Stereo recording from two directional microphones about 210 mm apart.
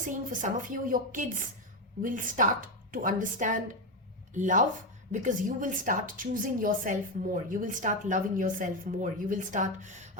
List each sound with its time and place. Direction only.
0.1 s speech: 40° right (ahead or behind)